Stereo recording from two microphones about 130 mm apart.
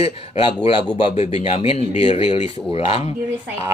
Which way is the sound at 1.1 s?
55° left (ahead or behind).